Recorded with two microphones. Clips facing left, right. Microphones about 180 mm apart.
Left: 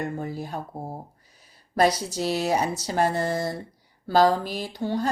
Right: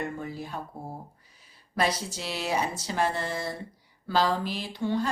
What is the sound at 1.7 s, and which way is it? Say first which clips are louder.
Speech: left 6 dB; 40° left (ahead or behind).